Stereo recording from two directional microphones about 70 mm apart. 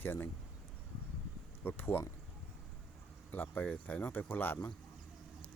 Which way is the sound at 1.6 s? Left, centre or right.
Left.